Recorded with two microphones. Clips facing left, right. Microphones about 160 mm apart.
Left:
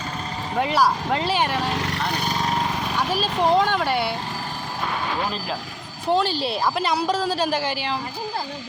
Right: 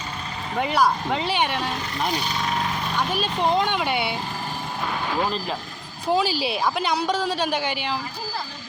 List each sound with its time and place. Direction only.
0.5 s a woman's voice: centre (ahead or behind)
1.7 s speech: 80° left
2.0 s speech: 50° left (ahead or behind)
3.1 s a woman's voice: centre (ahead or behind)
6.1 s a woman's voice: 5° right (ahead or behind)